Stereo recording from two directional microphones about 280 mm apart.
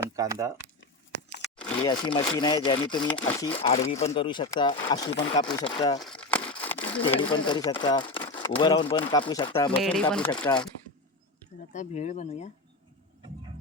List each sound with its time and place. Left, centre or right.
0.2 s speech: centre
1.4 s crunch: centre
1.7 s speech: centre
6.0 s crumpling: centre
6.7 s a sound: centre
7.2 s speech: centre
9.8 s speech: centre
11.7 s speech: left